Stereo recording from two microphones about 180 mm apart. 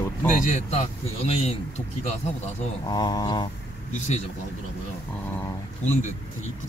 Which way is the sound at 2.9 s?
20° left (ahead or behind).